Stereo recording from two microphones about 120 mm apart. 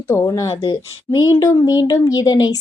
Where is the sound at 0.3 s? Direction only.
30° left (ahead or behind).